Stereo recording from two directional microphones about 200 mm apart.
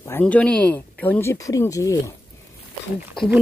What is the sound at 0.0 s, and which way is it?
Speech, 10° left (ahead or behind).